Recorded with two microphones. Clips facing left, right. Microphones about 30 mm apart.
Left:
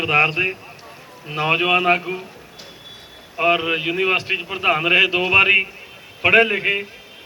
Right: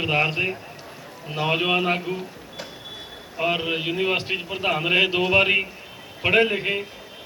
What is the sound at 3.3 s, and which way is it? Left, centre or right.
A man's voice, centre.